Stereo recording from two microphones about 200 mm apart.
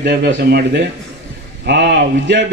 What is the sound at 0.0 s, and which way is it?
A man's voice, 55° right (ahead or behind).